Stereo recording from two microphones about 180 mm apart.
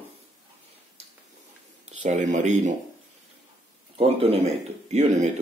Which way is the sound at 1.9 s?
45° right (ahead or behind).